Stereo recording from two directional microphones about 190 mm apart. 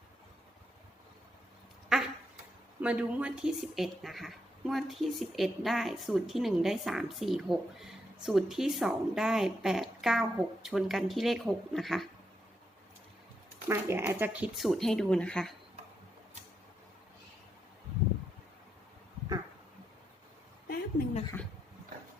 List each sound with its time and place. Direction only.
1.9 s duck: 5° right (ahead or behind)
2.8 s speech: 5° right (ahead or behind)
13.7 s speech: 15° right (ahead or behind); by 15.5 s 5° left (ahead or behind)
20.7 s a sound: 35° left (ahead or behind)